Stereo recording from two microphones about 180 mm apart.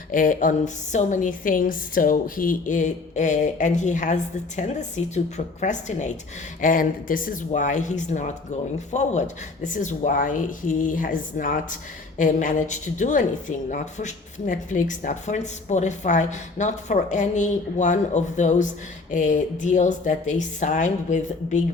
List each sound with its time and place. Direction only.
0.1 s speech: 50° left (ahead or behind)